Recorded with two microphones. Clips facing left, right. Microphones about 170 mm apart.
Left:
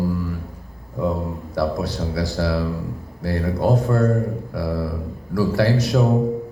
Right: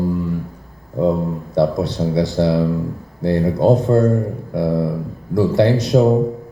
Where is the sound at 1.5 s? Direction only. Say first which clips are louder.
Right 5 dB; 20° right (ahead or behind).